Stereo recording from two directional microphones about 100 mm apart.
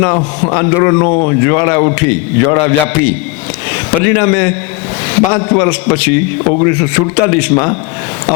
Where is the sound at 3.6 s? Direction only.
25° left (ahead or behind).